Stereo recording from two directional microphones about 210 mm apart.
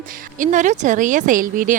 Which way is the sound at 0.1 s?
40° right (ahead or behind).